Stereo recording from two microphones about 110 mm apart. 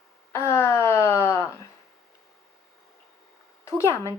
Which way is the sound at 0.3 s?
25° left (ahead or behind).